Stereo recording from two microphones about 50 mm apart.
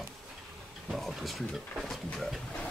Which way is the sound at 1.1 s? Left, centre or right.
Centre.